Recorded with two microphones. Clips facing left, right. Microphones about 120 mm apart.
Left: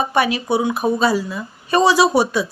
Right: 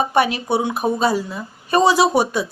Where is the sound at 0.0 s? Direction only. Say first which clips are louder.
Right 1 dB; 50° right (ahead or behind).